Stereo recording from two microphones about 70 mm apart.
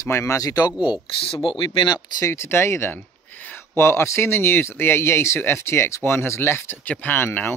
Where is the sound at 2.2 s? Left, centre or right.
Left.